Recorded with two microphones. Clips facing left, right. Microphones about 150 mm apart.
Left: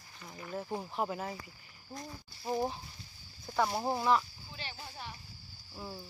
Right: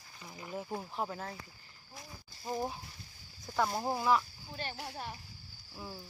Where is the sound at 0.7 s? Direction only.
5° left (ahead or behind).